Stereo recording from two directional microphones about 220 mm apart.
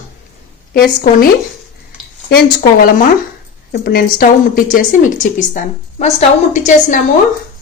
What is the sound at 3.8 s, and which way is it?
A woman's voice, 45° left (ahead or behind).